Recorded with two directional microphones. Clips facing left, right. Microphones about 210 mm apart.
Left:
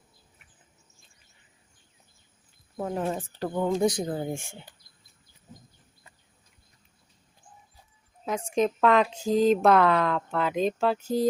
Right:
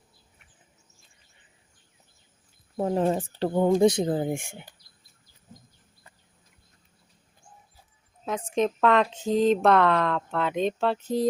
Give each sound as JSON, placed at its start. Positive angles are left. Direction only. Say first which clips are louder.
{"t": 2.7, "sound": "speech", "louder": "right 5 dB", "side_deg": -30}
{"t": 8.2, "sound": "speech", "louder": "even", "side_deg": 0}